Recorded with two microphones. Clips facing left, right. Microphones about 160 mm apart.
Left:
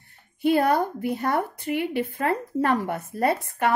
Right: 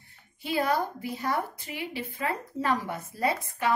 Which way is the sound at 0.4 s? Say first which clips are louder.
Left 7 dB; 55° left (ahead or behind).